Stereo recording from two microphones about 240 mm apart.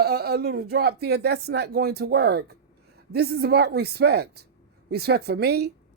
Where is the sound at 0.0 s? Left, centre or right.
Right.